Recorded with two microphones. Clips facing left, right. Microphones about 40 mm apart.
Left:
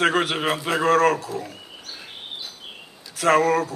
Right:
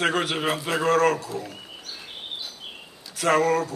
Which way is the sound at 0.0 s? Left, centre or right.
Centre.